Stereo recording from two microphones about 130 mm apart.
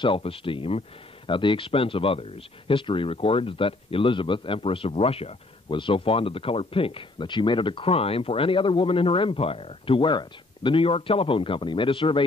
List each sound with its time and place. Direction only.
0.0 s speech: 45° left (ahead or behind)